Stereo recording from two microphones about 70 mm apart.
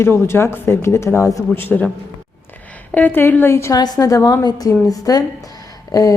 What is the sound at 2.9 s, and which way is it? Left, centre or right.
Speech, left.